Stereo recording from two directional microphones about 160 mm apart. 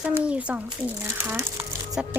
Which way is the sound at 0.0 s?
10° right (ahead or behind).